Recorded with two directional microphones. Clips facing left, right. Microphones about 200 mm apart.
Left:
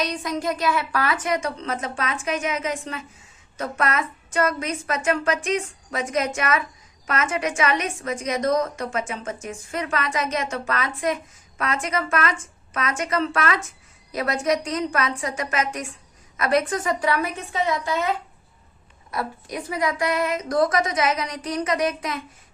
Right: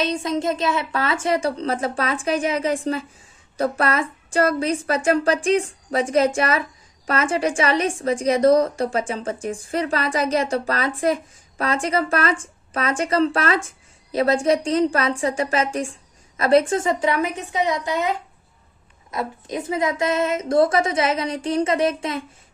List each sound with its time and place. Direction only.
0.0 s a woman's voice: 25° right (ahead or behind)
19.1 s a woman's voice: 20° right (ahead or behind)